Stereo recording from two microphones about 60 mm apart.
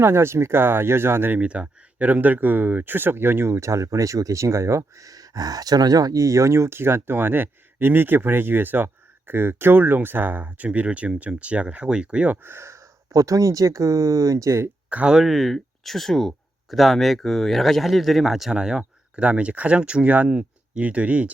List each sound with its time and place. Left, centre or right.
0.0 s speech: right
1.4 s speech: right
12.4 s speech: right
14.8 s a sound: right
15.1 s speech: centre; by 21.3 s right